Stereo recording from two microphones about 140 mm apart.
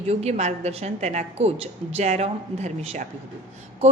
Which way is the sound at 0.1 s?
50° right (ahead or behind).